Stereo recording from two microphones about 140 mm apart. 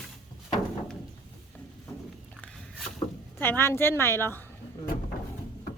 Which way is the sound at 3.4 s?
15° left (ahead or behind).